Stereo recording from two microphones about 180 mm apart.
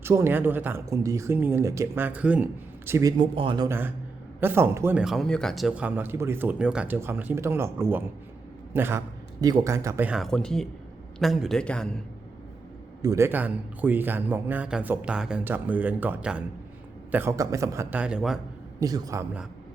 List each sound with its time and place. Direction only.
0.0 s speech: 15° right (ahead or behind)
3.7 s a man's voice: 10° right (ahead or behind)
10.1 s a man's voice: centre (ahead or behind)
13.0 s speech: 15° right (ahead or behind)
18.0 s a man's voice: 5° right (ahead or behind)
18.8 s a man's voice: 20° right (ahead or behind)